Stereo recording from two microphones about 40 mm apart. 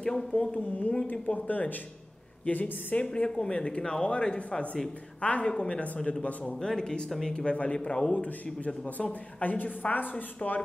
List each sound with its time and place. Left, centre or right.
0.3 s speech: left
0.6 s a woman's voice: left
3.3 s a woman's voice: centre
6.5 s a woman's voice: centre; by 10.6 s left